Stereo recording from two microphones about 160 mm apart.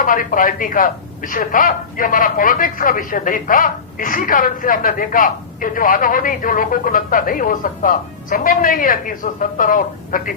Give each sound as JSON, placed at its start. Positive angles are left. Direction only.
{"t": 0.0, "sound": "speech", "side_deg": 60}